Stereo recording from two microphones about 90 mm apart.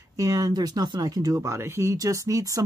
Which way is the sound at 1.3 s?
30° right (ahead or behind).